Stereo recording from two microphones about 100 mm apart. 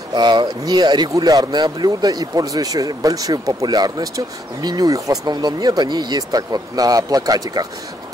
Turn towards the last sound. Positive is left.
turn(degrees=-40)  # may be behind; listen again after turning